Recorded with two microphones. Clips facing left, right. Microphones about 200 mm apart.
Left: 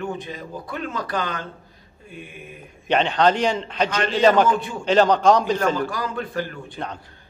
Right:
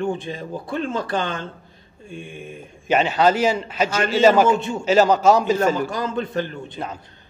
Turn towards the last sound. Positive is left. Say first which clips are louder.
# right 3 dB
turn(degrees=-25)  # may be behind; listen again after turning